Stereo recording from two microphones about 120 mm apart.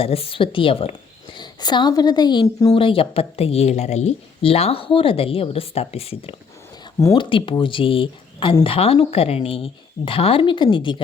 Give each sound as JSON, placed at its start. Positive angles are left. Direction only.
{"t": 0.0, "sound": "speech", "side_deg": 50}
{"t": 1.4, "sound": "a woman's voice", "side_deg": 40}
{"t": 2.7, "sound": "speech", "side_deg": 50}